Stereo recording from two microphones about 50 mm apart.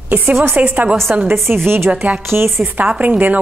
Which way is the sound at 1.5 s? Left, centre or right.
Right.